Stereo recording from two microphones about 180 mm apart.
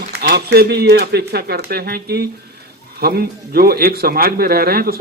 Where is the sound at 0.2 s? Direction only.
60° right (ahead or behind).